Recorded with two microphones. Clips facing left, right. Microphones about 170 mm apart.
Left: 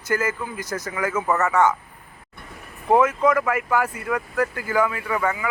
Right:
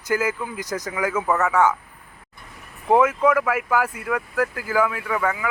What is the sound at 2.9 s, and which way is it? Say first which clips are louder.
Speech: even; 10° right (ahead or behind).